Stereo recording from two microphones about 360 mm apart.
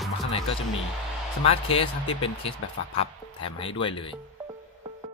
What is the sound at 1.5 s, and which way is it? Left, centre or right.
Speech, centre.